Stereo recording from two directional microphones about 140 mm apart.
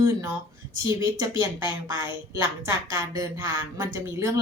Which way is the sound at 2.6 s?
25° right (ahead or behind).